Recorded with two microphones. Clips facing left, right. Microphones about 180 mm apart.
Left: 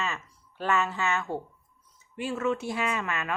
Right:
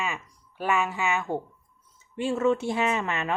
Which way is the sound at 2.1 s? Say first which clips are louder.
Right 5 dB; 25° right (ahead or behind).